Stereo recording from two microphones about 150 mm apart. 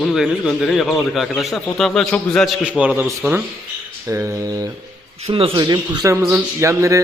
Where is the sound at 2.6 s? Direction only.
10° right (ahead or behind).